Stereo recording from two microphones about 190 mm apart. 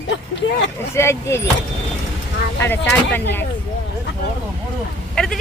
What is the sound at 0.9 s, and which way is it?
Speech, 15° left (ahead or behind).